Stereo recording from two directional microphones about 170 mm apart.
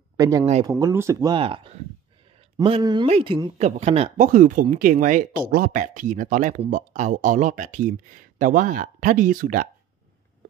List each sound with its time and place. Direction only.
0.2 s speech: 20° right (ahead or behind)
1.3 s a woman's voice: 30° right (ahead or behind); by 9.7 s 55° right (ahead or behind)